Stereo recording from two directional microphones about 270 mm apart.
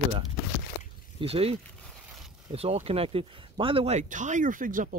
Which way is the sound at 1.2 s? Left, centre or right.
Right.